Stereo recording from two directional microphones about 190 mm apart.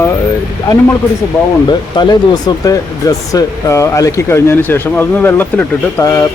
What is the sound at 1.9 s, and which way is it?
Speech, 20° left (ahead or behind).